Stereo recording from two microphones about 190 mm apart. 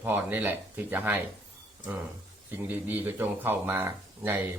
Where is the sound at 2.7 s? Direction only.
10° right (ahead or behind).